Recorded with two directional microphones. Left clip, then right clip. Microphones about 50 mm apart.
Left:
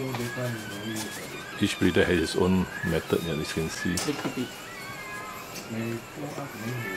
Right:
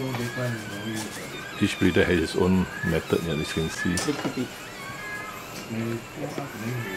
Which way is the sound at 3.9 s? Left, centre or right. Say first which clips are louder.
Right 2 dB; centre.